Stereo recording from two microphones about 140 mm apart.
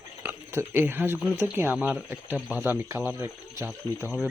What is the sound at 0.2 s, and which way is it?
Speech, 15° right (ahead or behind).